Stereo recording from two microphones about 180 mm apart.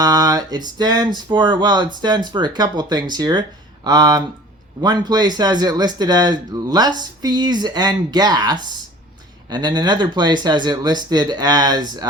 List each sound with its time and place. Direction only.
0.0 s speech: 20° right (ahead or behind)